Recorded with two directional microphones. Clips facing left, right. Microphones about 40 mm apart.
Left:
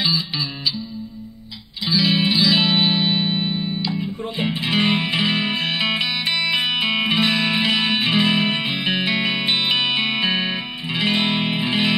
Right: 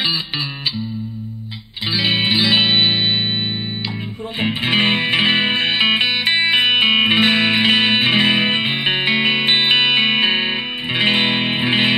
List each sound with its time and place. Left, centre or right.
0.0 s music: right
1.9 s music: right
4.6 s music: right